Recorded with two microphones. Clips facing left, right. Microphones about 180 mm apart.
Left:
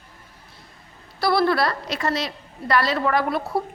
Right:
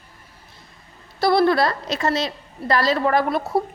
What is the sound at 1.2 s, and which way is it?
A woman's voice, 20° right (ahead or behind).